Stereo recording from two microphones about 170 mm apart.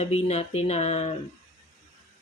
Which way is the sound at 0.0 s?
35° left (ahead or behind).